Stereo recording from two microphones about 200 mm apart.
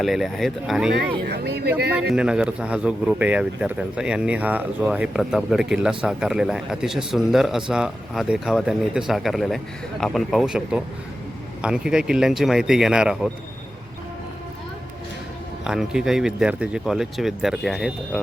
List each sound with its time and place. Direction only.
0.0 s speech: centre (ahead or behind)
1.3 s speech: 55° right (ahead or behind)
2.0 s speech: 5° right (ahead or behind)
15.6 s speech: 5° right (ahead or behind)